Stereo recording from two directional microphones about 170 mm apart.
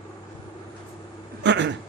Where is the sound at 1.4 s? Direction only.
90° right.